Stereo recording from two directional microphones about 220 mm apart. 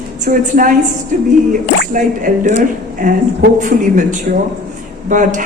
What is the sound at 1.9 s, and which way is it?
A woman's voice, 35° right (ahead or behind).